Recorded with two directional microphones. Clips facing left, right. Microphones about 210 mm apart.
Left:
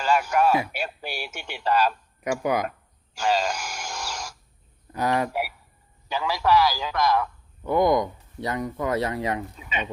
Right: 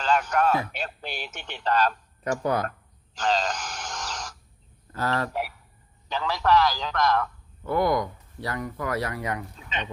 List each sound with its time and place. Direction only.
0.0 s a man's voice: 10° left (ahead or behind)
3.2 s a sound: 10° left (ahead or behind)
4.9 s a man's voice: 15° left (ahead or behind)
9.6 s a man's voice: 10° left (ahead or behind)